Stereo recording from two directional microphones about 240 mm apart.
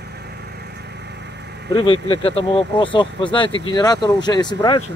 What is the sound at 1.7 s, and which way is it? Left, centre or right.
Speech, left.